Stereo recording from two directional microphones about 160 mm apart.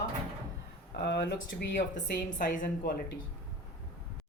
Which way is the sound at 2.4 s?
60° left (ahead or behind).